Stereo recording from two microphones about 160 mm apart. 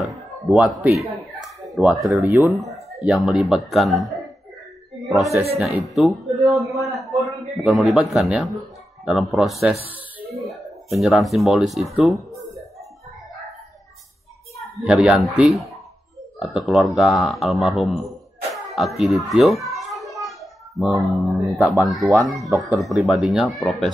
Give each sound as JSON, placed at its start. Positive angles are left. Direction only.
{"t": 0.0, "sound": "a man's voice", "side_deg": 0}
{"t": 2.2, "sound": "speech", "side_deg": -15}
{"t": 3.1, "sound": "a man's voice", "side_deg": 0}
{"t": 6.7, "sound": "a man's voice", "side_deg": -20}
{"t": 7.2, "sound": "a man's voice", "side_deg": 0}
{"t": 14.8, "sound": "a man's voice", "side_deg": -5}
{"t": 20.2, "sound": "a sound", "side_deg": 0}
{"t": 21.5, "sound": "a man's voice", "side_deg": 0}